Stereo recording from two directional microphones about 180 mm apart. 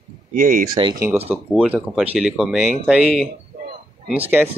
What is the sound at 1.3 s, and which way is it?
A man's voice, 5° right (ahead or behind).